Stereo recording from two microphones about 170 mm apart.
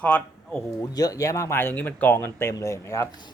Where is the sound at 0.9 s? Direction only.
20° left (ahead or behind).